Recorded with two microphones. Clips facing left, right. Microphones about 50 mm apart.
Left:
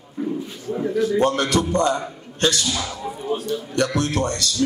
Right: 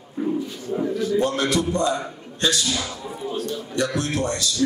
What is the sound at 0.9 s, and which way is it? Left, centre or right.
Speech, centre.